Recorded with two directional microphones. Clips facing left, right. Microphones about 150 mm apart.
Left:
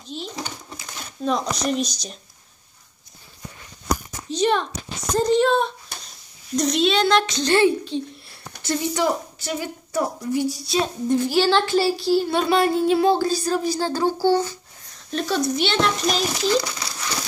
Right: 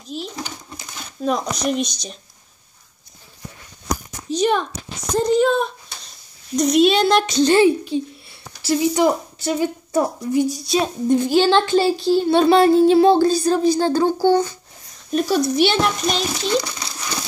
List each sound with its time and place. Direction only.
0.0 s a sound: 5° right (ahead or behind)
1.2 s speech: 5° right (ahead or behind)
4.4 s a sound: 5° right (ahead or behind)
5.2 s speech: 5° right (ahead or behind)
6.8 s a woman's voice: 15° right (ahead or behind)
15.0 s speech: 10° right (ahead or behind)
16.1 s speech: centre (ahead or behind)